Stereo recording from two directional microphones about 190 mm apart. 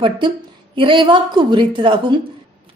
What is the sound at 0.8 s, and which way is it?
A woman's voice, 25° right (ahead or behind).